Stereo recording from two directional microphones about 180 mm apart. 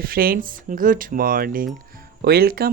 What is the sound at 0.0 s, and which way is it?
Speech, 55° right (ahead or behind).